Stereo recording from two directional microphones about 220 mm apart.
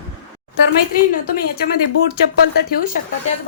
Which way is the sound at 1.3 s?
45° left (ahead or behind).